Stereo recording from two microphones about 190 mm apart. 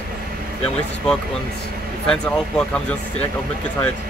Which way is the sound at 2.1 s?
5° left (ahead or behind).